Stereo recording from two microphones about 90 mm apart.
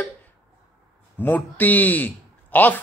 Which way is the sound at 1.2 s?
20° left (ahead or behind).